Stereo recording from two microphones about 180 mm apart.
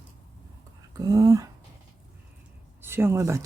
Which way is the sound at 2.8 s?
10° right (ahead or behind).